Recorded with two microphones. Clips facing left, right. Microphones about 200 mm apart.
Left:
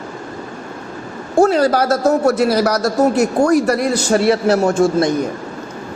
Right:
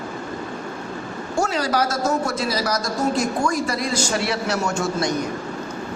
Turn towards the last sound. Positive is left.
turn(degrees=55)  # may be behind; listen again after turning